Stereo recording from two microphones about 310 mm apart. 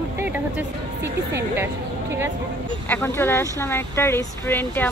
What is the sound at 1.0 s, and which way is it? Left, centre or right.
Speech, right.